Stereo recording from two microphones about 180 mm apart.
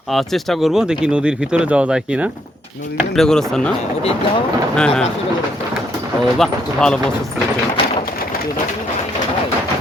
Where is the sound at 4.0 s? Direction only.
35° left (ahead or behind).